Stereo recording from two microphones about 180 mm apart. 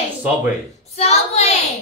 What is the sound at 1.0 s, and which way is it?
Speech, 35° left (ahead or behind).